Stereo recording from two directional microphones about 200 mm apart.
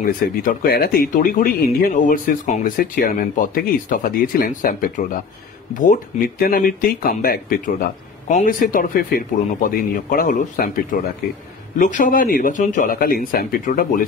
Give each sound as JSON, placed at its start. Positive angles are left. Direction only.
{"t": 0.0, "sound": "speech", "side_deg": 45}